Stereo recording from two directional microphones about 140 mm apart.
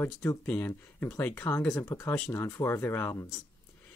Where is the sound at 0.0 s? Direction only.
15° left (ahead or behind).